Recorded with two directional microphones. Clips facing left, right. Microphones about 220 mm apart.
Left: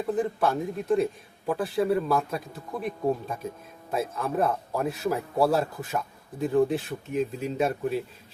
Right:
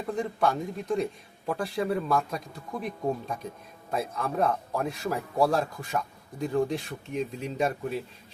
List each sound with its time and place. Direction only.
0.1 s speech: 5° left (ahead or behind)